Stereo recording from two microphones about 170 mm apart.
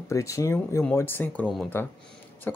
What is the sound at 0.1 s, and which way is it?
Speech, 20° left (ahead or behind).